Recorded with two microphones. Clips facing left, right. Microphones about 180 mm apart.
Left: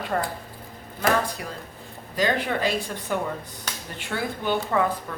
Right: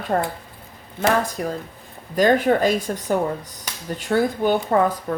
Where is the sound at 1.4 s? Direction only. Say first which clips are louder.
Right 9 dB; 40° right (ahead or behind).